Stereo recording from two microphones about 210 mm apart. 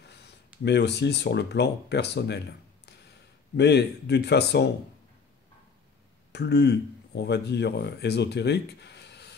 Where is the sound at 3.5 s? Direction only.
55° left (ahead or behind).